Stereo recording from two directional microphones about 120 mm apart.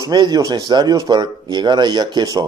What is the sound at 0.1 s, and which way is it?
Speech, 35° right (ahead or behind).